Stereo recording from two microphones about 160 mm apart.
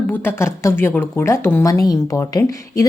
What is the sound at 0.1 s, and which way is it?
Speech, 15° left (ahead or behind).